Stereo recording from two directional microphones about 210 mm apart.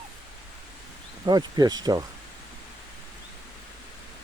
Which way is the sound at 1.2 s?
20° right (ahead or behind).